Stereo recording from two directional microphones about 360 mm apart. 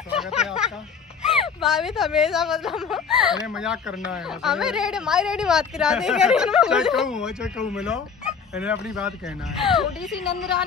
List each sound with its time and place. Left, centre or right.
0.2 s a sound: centre
1.4 s speech: centre
7.7 s fowl: centre
9.6 s speech: centre
10.2 s a woman's voice: left